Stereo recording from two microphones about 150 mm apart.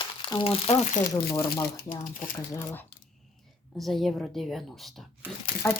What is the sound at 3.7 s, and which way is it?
A woman's voice, centre (ahead or behind).